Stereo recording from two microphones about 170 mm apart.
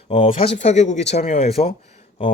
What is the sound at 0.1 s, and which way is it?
Speech, 35° left (ahead or behind).